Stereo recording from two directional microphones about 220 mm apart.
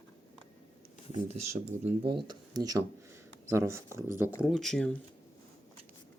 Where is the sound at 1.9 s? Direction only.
20° right (ahead or behind).